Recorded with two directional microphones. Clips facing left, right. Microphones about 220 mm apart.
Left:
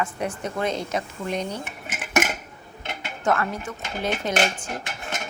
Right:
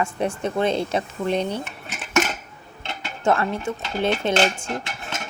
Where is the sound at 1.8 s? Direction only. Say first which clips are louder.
Right 1 dB; 15° left (ahead or behind).